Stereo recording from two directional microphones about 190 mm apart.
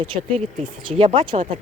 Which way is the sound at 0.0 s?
30° right (ahead or behind).